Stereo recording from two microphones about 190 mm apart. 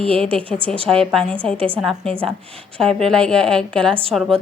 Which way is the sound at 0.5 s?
5° left (ahead or behind).